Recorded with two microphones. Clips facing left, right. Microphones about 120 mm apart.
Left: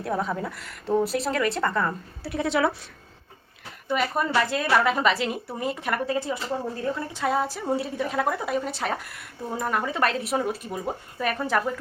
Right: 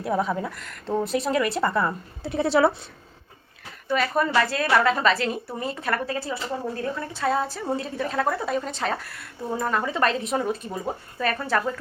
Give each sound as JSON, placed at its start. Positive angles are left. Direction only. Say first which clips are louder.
{"t": 0.0, "sound": "a woman's voice", "louder": "right 2 dB", "side_deg": -5}
{"t": 2.2, "sound": "a woman's voice", "louder": "right 4 dB", "side_deg": -30}
{"t": 3.8, "sound": "a woman's voice", "louder": "right 2 dB", "side_deg": 15}